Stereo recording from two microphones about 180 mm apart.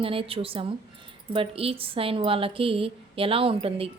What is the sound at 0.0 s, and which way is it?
Speech, 30° right (ahead or behind).